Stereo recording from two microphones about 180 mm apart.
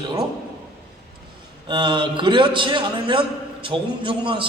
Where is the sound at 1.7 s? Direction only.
25° right (ahead or behind).